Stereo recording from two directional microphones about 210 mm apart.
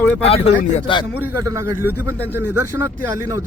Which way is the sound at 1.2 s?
10° right (ahead or behind).